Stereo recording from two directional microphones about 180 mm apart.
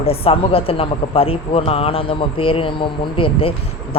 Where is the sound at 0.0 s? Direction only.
30° left (ahead or behind).